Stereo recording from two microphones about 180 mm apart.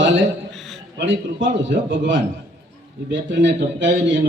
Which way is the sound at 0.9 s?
90° right.